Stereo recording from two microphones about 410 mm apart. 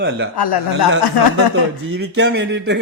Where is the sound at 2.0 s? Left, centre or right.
Right.